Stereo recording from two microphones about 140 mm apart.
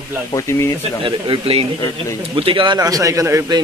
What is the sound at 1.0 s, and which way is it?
A man's voice, 40° right (ahead or behind).